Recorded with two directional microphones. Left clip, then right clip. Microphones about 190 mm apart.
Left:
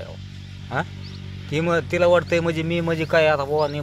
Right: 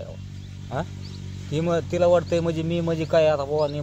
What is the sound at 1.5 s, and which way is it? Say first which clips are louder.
Speech: left 3 dB; 15° left (ahead or behind).